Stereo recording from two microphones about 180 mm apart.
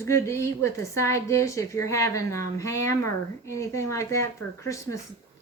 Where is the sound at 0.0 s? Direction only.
15° left (ahead or behind).